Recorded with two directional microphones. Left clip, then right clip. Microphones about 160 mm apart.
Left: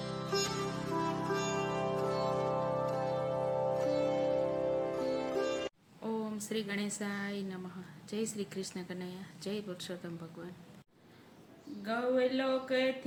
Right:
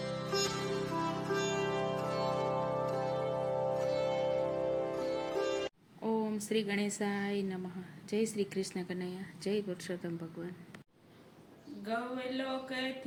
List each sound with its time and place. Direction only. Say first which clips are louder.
0.0 s music: right 1 dB; centre (ahead or behind)
6.1 s a woman's voice: right 4 dB; 10° right (ahead or behind)
11.9 s speech: left 6 dB; 45° left (ahead or behind)